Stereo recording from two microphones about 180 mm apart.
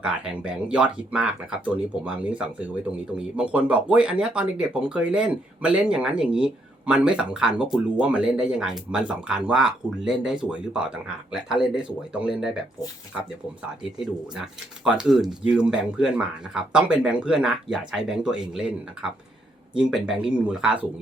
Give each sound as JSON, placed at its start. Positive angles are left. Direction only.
{"t": 0.0, "sound": "speech", "side_deg": -5}
{"t": 19.7, "sound": "speech", "side_deg": -5}